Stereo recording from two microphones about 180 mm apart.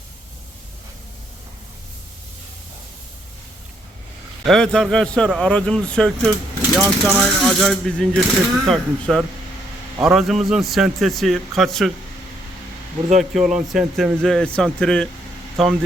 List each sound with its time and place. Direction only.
4.4 s a man's voice: 5° left (ahead or behind)
13.1 s a man's voice: centre (ahead or behind)